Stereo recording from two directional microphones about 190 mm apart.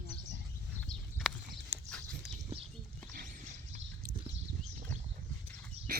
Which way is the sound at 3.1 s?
40° right (ahead or behind).